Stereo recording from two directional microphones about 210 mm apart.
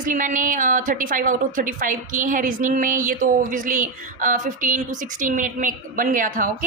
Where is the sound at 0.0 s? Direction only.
40° right (ahead or behind).